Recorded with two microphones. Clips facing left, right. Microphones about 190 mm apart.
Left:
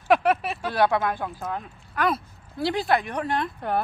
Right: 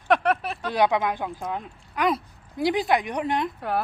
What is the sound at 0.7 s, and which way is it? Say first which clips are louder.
A woman's voice: even; 15° right (ahead or behind).